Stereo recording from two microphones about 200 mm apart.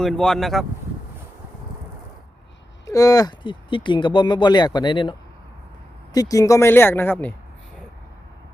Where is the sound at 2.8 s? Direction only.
15° left (ahead or behind).